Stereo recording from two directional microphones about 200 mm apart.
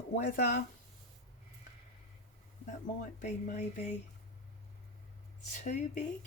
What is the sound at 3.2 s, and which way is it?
Speech, 40° left (ahead or behind).